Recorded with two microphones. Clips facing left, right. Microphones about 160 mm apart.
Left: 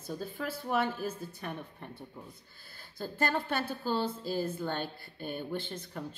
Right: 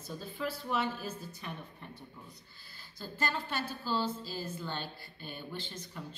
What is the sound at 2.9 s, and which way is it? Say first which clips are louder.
A woman's voice: left 5 dB; 55° left (ahead or behind).